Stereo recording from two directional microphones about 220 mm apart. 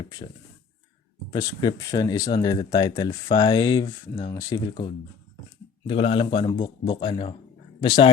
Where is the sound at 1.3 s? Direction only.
15° left (ahead or behind).